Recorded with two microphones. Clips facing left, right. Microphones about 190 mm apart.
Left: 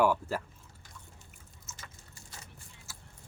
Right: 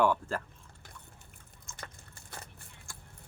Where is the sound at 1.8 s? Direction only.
55° right (ahead or behind).